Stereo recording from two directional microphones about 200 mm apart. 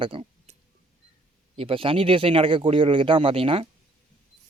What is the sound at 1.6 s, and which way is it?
Speech, 25° right (ahead or behind).